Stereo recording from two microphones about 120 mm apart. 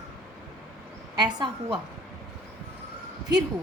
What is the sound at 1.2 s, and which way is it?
Speech, 35° right (ahead or behind).